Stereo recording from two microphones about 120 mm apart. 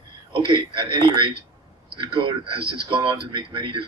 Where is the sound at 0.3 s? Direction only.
45° right (ahead or behind).